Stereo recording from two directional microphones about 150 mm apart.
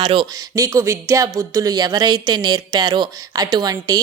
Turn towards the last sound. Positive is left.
turn(degrees=-25)  # may be behind; listen again after turning